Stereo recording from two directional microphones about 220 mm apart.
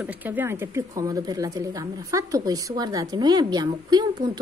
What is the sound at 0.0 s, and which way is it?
Speech, 10° right (ahead or behind).